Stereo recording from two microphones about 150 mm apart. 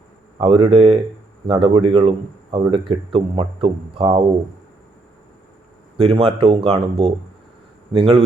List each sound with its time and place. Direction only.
0.3 s speech: 35° right (ahead or behind)
6.0 s speech: 40° right (ahead or behind)